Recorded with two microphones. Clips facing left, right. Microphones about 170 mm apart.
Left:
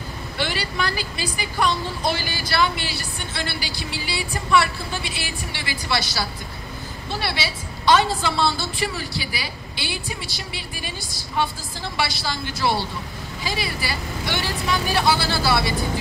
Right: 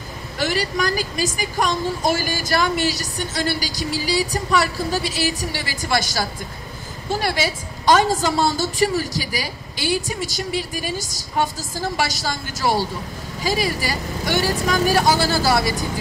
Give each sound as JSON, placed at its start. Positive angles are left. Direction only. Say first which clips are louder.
{"t": 0.4, "sound": "a woman's voice", "louder": "right 4 dB", "side_deg": -40}